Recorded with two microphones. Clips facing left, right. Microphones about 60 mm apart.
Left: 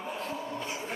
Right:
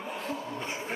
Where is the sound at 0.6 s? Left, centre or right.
Right.